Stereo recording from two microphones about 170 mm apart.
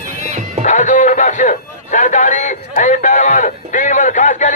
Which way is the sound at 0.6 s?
45° left (ahead or behind).